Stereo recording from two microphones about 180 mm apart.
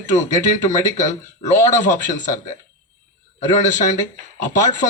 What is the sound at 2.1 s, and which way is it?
A man's voice, 45° left (ahead or behind).